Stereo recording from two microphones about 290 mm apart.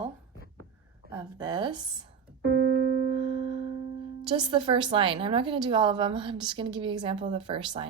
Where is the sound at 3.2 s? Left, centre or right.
Centre.